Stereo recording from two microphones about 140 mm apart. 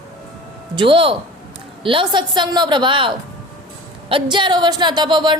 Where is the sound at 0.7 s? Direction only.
40° right (ahead or behind).